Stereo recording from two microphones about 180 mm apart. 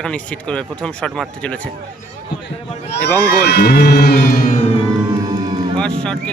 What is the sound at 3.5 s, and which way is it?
Music, 65° left (ahead or behind).